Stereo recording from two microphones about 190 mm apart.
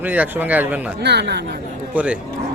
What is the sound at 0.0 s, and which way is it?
Speech, 10° right (ahead or behind).